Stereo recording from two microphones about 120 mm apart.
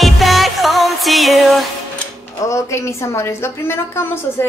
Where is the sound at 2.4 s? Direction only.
25° left (ahead or behind).